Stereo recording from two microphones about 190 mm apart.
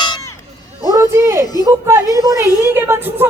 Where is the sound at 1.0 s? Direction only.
15° right (ahead or behind).